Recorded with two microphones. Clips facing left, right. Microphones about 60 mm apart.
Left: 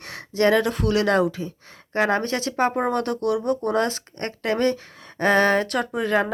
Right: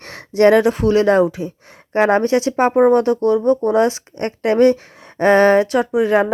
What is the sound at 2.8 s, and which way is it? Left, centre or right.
Speech, centre.